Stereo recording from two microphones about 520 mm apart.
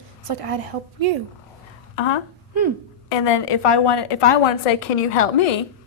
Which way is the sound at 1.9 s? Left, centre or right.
Left.